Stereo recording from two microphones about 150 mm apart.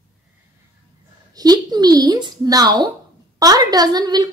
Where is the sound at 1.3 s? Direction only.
25° right (ahead or behind).